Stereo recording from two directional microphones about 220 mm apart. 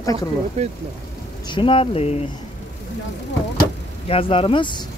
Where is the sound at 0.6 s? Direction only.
30° right (ahead or behind).